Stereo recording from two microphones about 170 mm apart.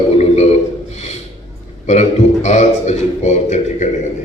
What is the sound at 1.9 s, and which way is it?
A man's voice, 40° left (ahead or behind).